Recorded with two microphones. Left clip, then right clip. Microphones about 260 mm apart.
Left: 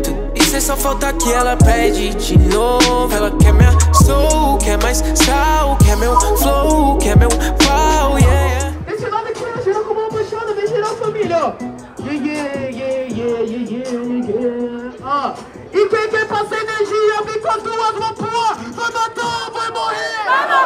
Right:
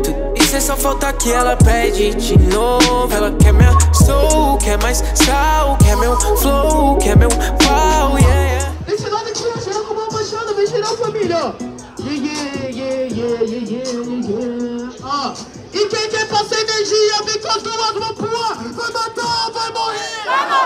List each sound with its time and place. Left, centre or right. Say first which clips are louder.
0.0 s music: right 1 dB; centre
10.6 s a sound: right 2 dB; right
15.9 s music: left 2 dB; centre
16.9 s a sound: even; centre
18.9 s music: right 2 dB; left
20.2 s chatter: left 1 dB; centre